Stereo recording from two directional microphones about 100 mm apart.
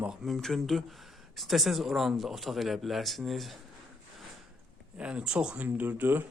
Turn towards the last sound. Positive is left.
turn(degrees=-20)  # may be behind; listen again after turning